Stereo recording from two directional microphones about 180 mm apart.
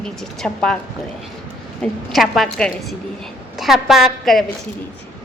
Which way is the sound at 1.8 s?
Centre (ahead or behind).